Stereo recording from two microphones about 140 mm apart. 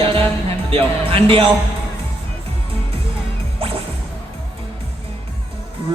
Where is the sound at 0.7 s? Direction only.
40° right (ahead or behind).